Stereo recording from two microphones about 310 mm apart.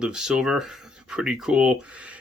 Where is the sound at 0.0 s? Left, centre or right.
Centre.